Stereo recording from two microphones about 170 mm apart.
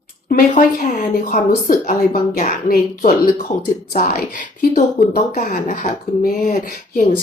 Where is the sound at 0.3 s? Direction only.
55° left (ahead or behind).